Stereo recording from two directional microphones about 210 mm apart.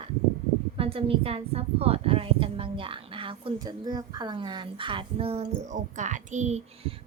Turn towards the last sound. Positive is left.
turn(degrees=-30)  # may be behind; listen again after turning